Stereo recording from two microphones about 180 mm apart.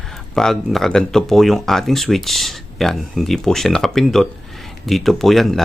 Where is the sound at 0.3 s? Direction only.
Centre (ahead or behind).